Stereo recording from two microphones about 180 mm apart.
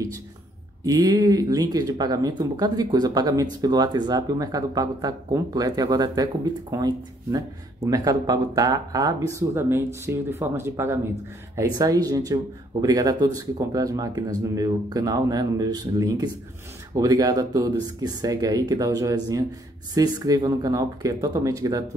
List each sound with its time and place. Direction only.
0.8 s speech: 20° right (ahead or behind)